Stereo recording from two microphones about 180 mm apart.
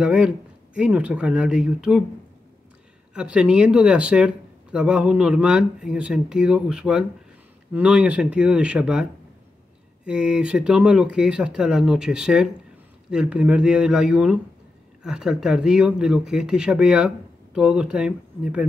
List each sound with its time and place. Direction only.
0.0 s speech: 5° right (ahead or behind)
3.2 s speech: 5° right (ahead or behind)
10.0 s speech: 5° right (ahead or behind)